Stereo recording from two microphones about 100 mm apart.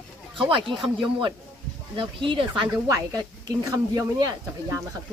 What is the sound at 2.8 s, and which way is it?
Speech, 35° right (ahead or behind).